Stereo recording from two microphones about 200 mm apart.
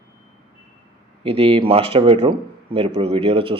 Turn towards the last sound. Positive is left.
turn(degrees=-30)  # may be behind; listen again after turning